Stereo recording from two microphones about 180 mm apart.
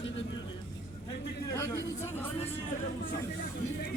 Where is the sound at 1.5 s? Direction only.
15° left (ahead or behind).